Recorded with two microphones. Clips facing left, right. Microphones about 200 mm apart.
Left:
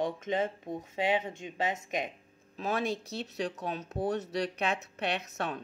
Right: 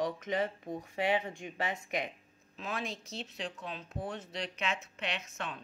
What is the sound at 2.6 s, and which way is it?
Speech, 40° left (ahead or behind).